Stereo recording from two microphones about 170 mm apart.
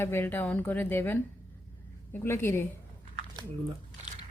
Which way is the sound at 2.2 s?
15° left (ahead or behind).